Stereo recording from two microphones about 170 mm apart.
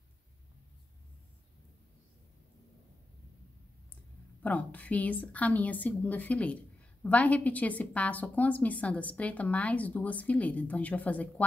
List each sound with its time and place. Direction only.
4.4 s a woman's voice: 10° left (ahead or behind)